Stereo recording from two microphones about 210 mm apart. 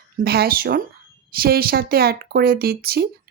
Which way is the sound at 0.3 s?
45° right (ahead or behind).